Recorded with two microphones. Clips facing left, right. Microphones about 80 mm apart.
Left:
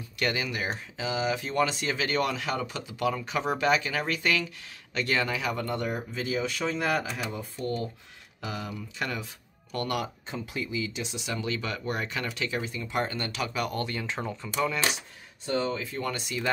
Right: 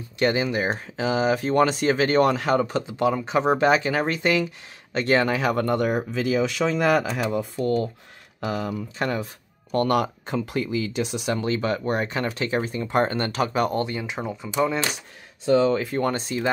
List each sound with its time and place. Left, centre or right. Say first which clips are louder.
0.2 s speech: right 8 dB; right
8.4 s speech: right 8 dB; right
11.3 s speech: right 7 dB; right
13.8 s speech: right 4 dB; centre
15.7 s speech: right 10 dB; right
16.0 s speech: right 8 dB; right